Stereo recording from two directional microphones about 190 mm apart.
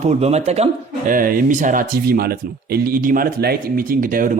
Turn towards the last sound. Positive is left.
turn(degrees=-45)  # may be behind; listen again after turning